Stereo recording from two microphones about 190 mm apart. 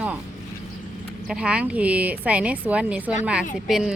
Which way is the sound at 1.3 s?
5° right (ahead or behind).